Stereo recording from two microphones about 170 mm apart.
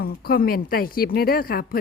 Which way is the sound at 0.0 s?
65° left (ahead or behind).